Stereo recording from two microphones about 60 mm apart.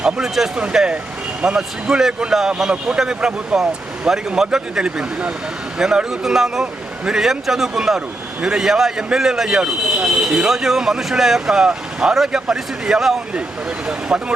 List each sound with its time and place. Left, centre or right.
0.0 s speech: centre